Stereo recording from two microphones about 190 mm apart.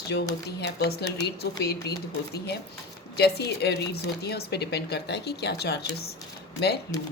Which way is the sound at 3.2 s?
60° left (ahead or behind).